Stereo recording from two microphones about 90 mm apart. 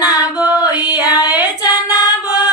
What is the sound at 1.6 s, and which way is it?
Female singing, 45° left (ahead or behind).